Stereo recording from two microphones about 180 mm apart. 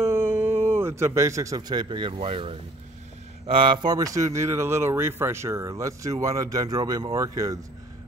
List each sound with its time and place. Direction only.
0.0 s speech: 15° right (ahead or behind)